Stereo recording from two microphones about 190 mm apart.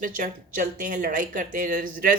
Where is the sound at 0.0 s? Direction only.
45° right (ahead or behind).